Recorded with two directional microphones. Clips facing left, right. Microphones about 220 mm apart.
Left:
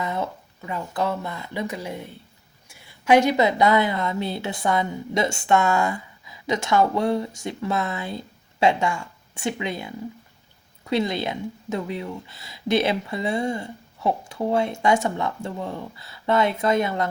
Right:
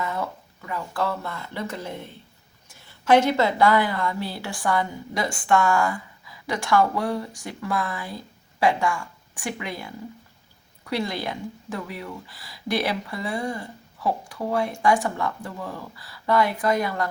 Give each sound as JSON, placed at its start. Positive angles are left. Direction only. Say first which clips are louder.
{"t": 0.0, "sound": "a woman's voice", "louder": "left 2 dB", "side_deg": 20}